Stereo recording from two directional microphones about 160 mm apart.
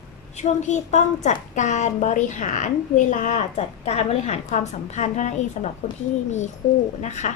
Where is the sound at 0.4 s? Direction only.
45° left (ahead or behind).